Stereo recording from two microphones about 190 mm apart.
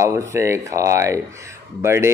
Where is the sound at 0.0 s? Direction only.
15° right (ahead or behind).